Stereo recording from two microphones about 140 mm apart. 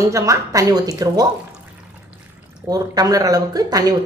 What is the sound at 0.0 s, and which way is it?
A woman's voice, 25° right (ahead or behind).